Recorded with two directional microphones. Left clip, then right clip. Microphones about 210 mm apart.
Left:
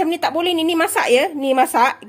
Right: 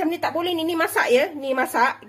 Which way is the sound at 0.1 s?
45° left (ahead or behind).